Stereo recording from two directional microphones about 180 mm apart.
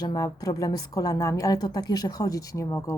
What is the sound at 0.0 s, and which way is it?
A woman's voice, 20° left (ahead or behind).